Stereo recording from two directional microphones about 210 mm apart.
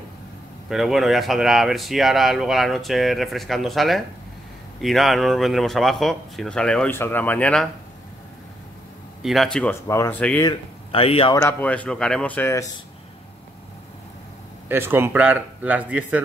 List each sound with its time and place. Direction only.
0.7 s speech: centre (ahead or behind)
9.2 s speech: centre (ahead or behind)
10.5 s speech: 25° left (ahead or behind)
11.3 s speech: 10° left (ahead or behind)
14.7 s speech: 10° right (ahead or behind)